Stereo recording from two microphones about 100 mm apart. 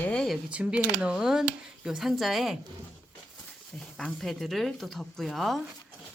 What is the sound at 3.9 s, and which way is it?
Speech, 5° left (ahead or behind).